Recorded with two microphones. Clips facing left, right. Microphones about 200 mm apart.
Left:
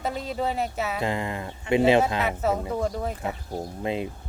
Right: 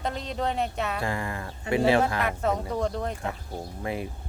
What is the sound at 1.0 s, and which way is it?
Speech, 20° left (ahead or behind).